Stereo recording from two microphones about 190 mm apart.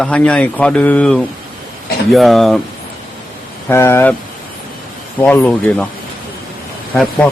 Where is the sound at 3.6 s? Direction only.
15° left (ahead or behind).